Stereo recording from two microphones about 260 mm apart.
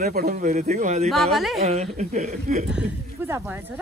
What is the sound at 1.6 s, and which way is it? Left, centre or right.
A man's voice, right.